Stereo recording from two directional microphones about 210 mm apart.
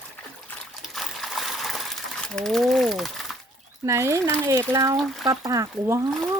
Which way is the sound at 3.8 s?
15° right (ahead or behind).